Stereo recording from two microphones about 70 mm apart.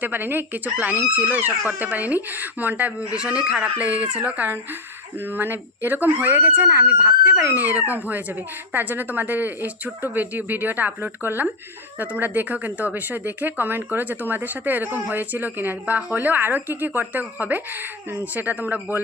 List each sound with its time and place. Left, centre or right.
0.0 s speech: right